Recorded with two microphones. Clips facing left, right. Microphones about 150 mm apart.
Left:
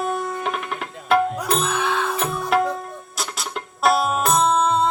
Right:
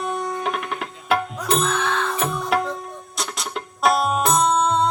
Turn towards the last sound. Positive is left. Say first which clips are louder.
# even
turn(degrees=0)  # may be behind; listen again after turning